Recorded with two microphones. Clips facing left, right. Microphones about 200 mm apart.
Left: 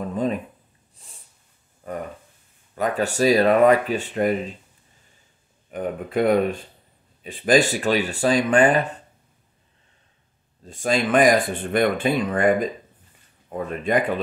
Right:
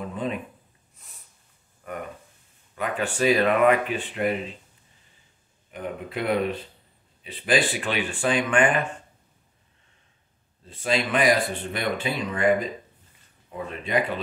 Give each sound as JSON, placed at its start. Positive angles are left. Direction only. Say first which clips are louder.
{"t": 0.0, "sound": "a sound", "louder": "left 5 dB", "side_deg": 40}
{"t": 1.0, "sound": "snort", "louder": "left 3 dB", "side_deg": 30}
{"t": 1.8, "sound": "a sound", "louder": "left 4 dB", "side_deg": 30}
{"t": 2.7, "sound": "speech", "louder": "left 5 dB", "side_deg": 40}
{"t": 5.7, "sound": "speech", "louder": "left 6 dB", "side_deg": 45}
{"t": 10.7, "sound": "speech", "louder": "left 5 dB", "side_deg": 45}